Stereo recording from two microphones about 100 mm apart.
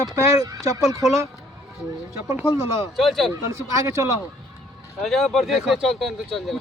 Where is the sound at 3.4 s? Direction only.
30° right (ahead or behind).